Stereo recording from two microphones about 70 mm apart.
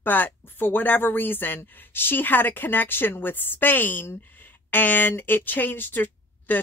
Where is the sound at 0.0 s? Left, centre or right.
Left.